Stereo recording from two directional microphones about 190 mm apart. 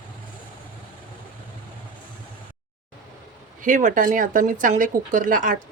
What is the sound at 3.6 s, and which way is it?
Speech, 45° right (ahead or behind).